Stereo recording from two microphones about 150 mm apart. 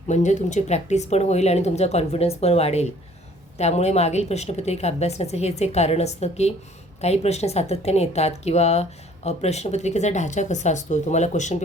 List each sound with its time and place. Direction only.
0.1 s speech: 55° left (ahead or behind)